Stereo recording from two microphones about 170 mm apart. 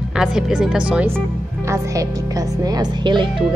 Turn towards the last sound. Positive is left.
turn(degrees=-25)  # may be behind; listen again after turning